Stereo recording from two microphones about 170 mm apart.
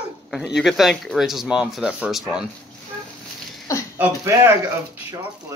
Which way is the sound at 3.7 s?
20° left (ahead or behind).